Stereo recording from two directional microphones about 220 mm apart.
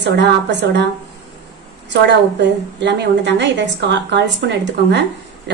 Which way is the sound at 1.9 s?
50° right (ahead or behind).